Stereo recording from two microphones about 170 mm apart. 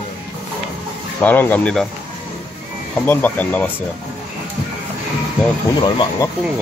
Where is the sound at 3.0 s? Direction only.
10° left (ahead or behind).